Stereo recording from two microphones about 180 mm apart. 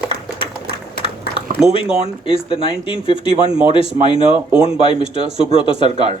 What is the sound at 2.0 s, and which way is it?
Speech, 30° left (ahead or behind).